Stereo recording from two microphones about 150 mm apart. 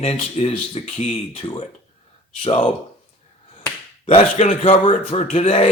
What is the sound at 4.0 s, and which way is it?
Speech, 45° left (ahead or behind).